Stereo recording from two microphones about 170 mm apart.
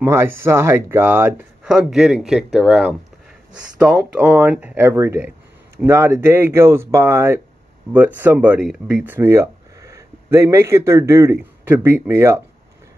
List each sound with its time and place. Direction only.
0.0 s speech: 15° right (ahead or behind)